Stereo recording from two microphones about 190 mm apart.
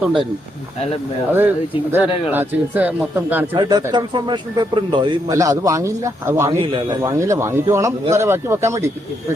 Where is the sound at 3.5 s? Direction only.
20° right (ahead or behind).